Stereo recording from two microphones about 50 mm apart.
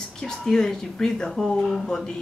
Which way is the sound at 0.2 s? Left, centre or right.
Centre.